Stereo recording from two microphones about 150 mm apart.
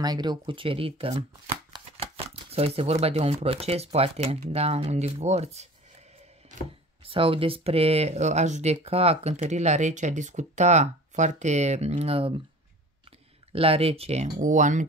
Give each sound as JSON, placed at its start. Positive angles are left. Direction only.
{"t": 0.0, "sound": "speech", "side_deg": -30}
{"t": 7.1, "sound": "speech", "side_deg": -35}
{"t": 13.5, "sound": "speech", "side_deg": -40}